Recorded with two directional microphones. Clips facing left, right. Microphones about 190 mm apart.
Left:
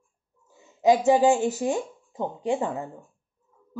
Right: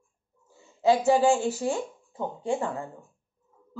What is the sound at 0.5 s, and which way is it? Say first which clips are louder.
Speech: left 2 dB; 20° left (ahead or behind).